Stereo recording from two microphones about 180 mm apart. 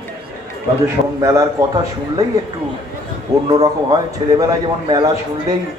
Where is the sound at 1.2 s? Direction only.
20° right (ahead or behind).